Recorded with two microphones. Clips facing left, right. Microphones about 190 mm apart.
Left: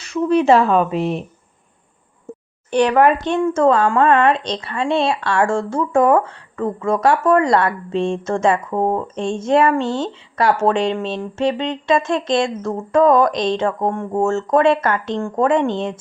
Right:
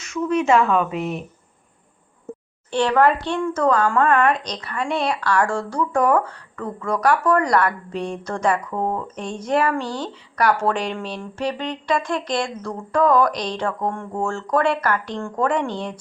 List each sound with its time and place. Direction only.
0.0 s speech: 35° left (ahead or behind)
2.6 s speech: 15° left (ahead or behind)